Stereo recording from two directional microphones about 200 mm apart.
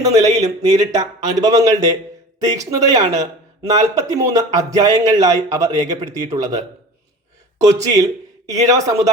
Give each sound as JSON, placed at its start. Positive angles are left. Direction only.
{"t": 0.0, "sound": "speech", "side_deg": -15}